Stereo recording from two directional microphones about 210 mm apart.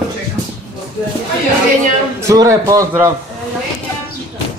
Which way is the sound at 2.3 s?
15° right (ahead or behind).